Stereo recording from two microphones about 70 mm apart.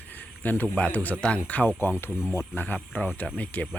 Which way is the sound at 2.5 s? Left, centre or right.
Left.